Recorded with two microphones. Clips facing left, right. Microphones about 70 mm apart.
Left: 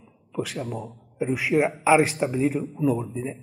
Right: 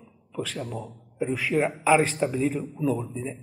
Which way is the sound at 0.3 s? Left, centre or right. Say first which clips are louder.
Left 3 dB; centre.